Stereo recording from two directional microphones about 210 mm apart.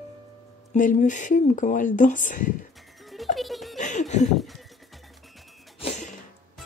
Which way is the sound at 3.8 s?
35° left (ahead or behind).